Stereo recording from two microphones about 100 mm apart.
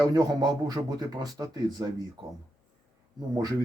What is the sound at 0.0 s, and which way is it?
Speech, 40° right (ahead or behind).